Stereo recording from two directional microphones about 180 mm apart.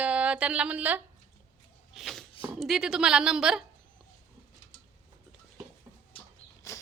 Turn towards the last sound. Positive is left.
turn(degrees=15)  # may be behind; listen again after turning